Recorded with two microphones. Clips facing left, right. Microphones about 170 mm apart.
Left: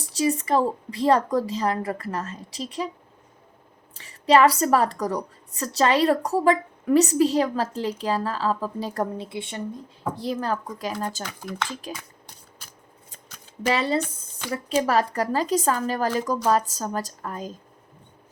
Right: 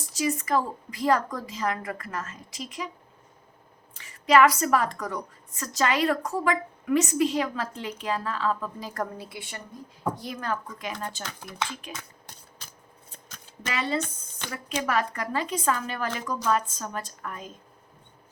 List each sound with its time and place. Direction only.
0.2 s a woman's voice: 30° left (ahead or behind)
3.9 s a woman's voice: 30° left (ahead or behind)
13.7 s a woman's voice: 35° left (ahead or behind)